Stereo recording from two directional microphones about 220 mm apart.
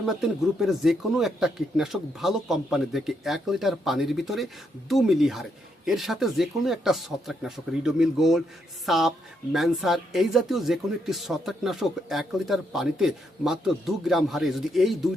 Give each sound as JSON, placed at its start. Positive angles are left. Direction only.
{"t": 0.0, "sound": "speech", "side_deg": 0}